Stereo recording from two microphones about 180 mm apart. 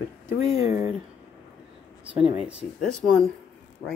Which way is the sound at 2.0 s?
5° right (ahead or behind).